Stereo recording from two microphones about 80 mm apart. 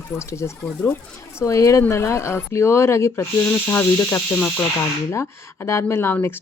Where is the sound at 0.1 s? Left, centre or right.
Left.